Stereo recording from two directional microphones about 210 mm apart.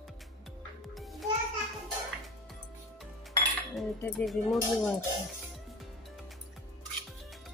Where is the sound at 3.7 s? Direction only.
Centre (ahead or behind).